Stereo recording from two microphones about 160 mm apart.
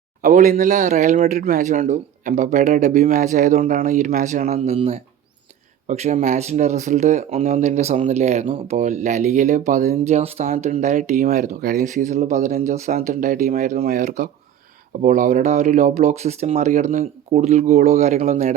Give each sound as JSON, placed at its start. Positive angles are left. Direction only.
{"t": 0.2, "sound": "speech", "side_deg": -50}
{"t": 12.6, "sound": "speech", "side_deg": -50}
{"t": 13.0, "sound": "speech", "side_deg": -60}